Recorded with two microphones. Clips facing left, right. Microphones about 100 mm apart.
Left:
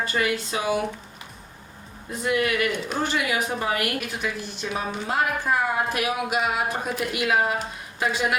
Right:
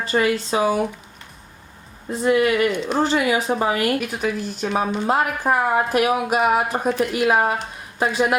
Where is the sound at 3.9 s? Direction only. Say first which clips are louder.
Right 6 dB; 45° right (ahead or behind).